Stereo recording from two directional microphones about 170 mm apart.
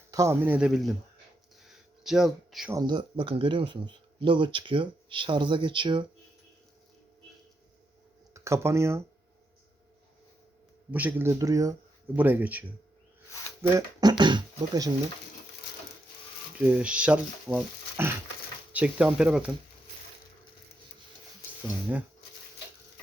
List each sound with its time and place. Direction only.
0.1 s speech: 15° right (ahead or behind); by 0.9 s centre (ahead or behind)
1.6 s a sound: centre (ahead or behind)
2.7 s speech: 25° right (ahead or behind)
8.3 s speech: 15° right (ahead or behind)
10.9 s speech: 10° right (ahead or behind)
13.6 s a sound: 20° right (ahead or behind)
16.6 s speech: 5° right (ahead or behind)